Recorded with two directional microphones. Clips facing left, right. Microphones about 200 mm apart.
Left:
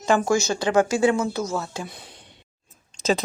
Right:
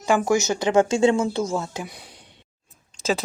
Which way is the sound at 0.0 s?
10° right (ahead or behind).